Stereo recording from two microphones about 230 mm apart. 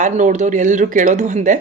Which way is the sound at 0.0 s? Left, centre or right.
Right.